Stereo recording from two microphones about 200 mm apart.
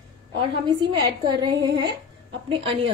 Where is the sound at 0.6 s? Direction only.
25° right (ahead or behind).